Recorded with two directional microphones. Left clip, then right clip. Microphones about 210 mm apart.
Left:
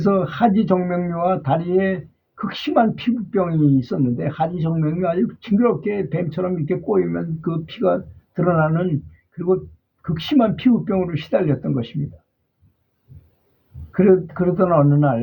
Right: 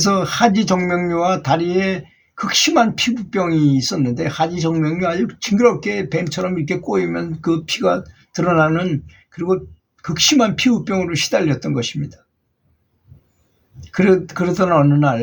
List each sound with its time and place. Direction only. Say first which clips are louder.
0.0 s speech: right 3 dB; 5° right (ahead or behind)
10.2 s speech: right 4 dB; 5° right (ahead or behind)
13.9 s speech: even; 10° right (ahead or behind)